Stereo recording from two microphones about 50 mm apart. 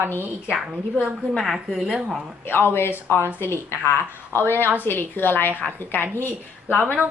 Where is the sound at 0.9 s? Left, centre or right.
Right.